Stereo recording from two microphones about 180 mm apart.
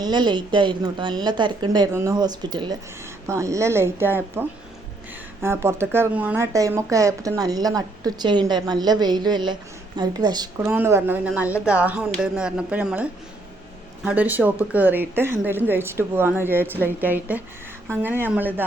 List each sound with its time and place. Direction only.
0.0 s speech: 25° right (ahead or behind)